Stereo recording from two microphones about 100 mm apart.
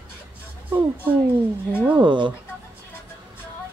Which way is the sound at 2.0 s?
55° right (ahead or behind).